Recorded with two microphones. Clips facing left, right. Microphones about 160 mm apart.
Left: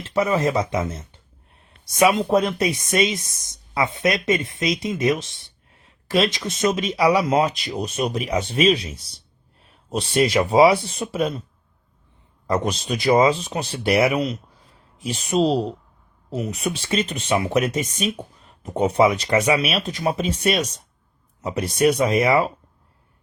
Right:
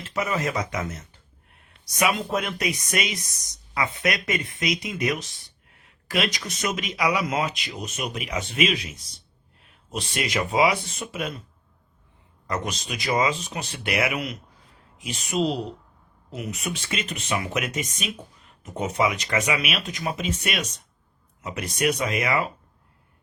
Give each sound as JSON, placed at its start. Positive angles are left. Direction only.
{"t": 0.0, "sound": "speech", "side_deg": 30}
{"t": 12.5, "sound": "speech", "side_deg": 35}